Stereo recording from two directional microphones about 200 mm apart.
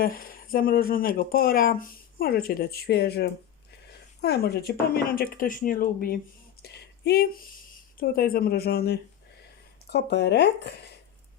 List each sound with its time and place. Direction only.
0.0 s speech: 45° left (ahead or behind)
6.6 s a sound: 55° left (ahead or behind)
7.9 s speech: 50° left (ahead or behind)